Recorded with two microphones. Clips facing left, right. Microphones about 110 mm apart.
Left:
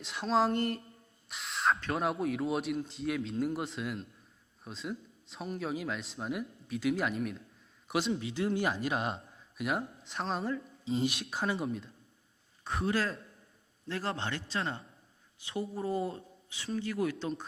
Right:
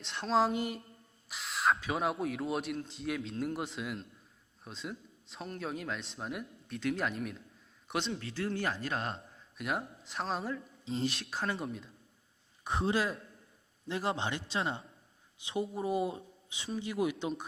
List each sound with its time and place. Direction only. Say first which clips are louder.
0.0 s a man's voice: even; centre (ahead or behind)
8.3 s a man's voice: left 3 dB; 15° left (ahead or behind); by 11.9 s centre (ahead or behind)
12.6 s a man's voice: right 1 dB; 20° right (ahead or behind)